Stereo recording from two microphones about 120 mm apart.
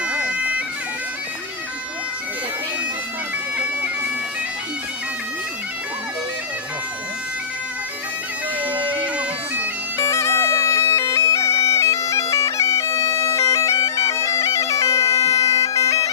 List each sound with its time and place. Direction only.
0.0 s bagpipes: 10° right (ahead or behind)
8.9 s bagpipes: 10° right (ahead or behind)
10.0 s bagpipes: 20° left (ahead or behind)